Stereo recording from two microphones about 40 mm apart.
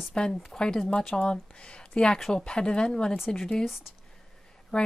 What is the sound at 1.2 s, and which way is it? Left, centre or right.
Speech, left.